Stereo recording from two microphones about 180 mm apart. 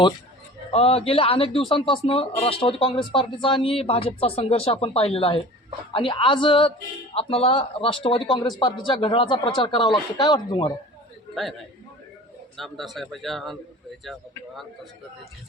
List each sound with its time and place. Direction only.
0.7 s a man's voice: 35° left (ahead or behind)
12.5 s a man's voice: centre (ahead or behind)